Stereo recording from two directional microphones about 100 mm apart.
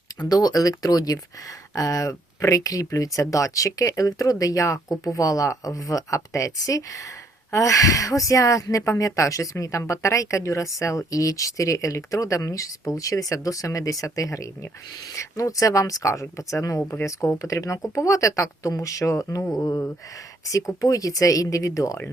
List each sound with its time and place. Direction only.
0.2 s speech: 40° left (ahead or behind)